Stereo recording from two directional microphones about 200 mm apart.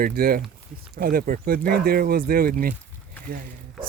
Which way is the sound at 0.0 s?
45° right (ahead or behind).